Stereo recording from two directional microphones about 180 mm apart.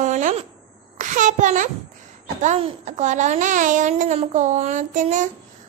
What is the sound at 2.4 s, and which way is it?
Child singing, 35° right (ahead or behind).